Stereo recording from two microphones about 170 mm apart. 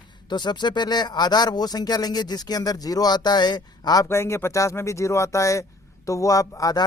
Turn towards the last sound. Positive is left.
turn(degrees=20)  # may be behind; listen again after turning